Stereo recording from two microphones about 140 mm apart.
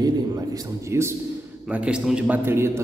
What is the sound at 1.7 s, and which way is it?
A man's voice, 5° right (ahead or behind).